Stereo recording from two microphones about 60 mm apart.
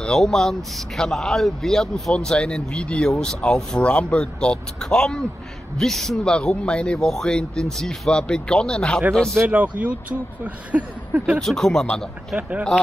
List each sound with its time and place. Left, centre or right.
0.0 s speech: centre
6.3 s speech: centre
7.1 s speech: centre
9.5 s speech: right
11.3 s speech: centre
12.4 s speech: right